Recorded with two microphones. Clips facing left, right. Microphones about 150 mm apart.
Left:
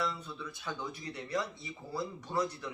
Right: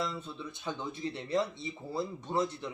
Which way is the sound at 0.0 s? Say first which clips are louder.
Right 1 dB; 25° right (ahead or behind).